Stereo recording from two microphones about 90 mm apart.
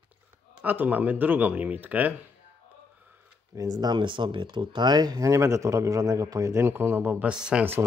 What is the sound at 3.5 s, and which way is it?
Speech, 40° right (ahead or behind).